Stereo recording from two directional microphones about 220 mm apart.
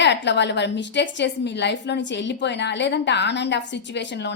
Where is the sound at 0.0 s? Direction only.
50° left (ahead or behind).